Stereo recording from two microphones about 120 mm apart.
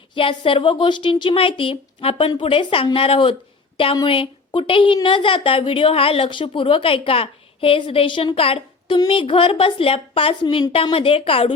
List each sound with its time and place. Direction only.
0.1 s a woman's voice: 45° left (ahead or behind)